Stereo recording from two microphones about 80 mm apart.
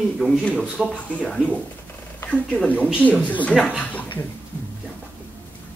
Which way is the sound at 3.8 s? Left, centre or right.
Centre.